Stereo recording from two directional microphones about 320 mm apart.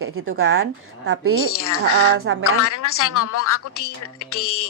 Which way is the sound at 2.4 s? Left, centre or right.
Left.